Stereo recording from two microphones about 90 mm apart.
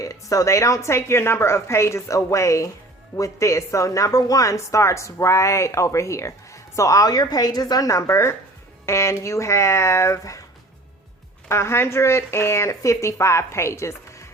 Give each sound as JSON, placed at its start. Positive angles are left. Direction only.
{"t": 0.0, "sound": "a woman's voice", "side_deg": 40}
{"t": 11.4, "sound": "a woman's voice", "side_deg": 30}